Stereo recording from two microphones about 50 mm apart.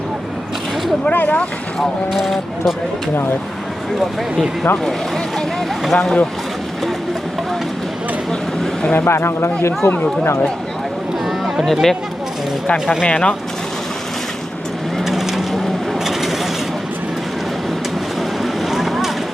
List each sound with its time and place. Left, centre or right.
1.1 s speech: left
2.1 s speech: centre
5.8 s speech: centre
8.3 s a sound: centre
9.0 s speech: left
11.3 s a sound: centre
11.6 s speech: centre
13.0 s speech: left
15.0 s vehicle: centre
18.4 s vehicle: centre